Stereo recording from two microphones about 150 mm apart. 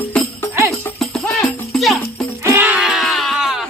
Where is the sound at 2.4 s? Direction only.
15° right (ahead or behind).